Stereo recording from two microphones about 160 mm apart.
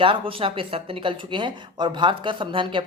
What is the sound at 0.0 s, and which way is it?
Speech, 35° right (ahead or behind).